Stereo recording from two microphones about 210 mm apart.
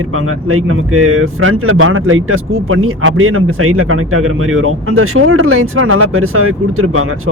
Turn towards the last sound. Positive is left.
turn(degrees=-80)